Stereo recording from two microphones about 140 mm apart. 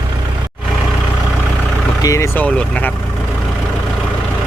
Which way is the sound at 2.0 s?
20° left (ahead or behind).